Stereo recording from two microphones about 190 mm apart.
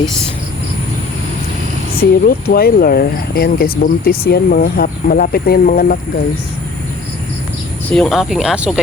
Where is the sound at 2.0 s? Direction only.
55° left (ahead or behind).